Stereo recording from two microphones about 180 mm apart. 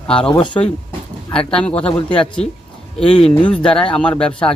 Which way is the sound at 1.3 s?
5° left (ahead or behind).